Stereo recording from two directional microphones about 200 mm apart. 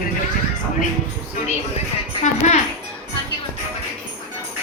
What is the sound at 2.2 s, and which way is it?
Speech, 35° left (ahead or behind).